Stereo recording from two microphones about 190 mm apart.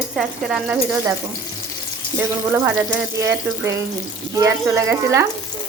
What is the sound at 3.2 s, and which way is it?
Speech, 15° right (ahead or behind).